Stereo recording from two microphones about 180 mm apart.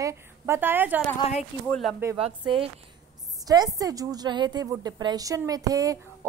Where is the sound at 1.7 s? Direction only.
Centre (ahead or behind).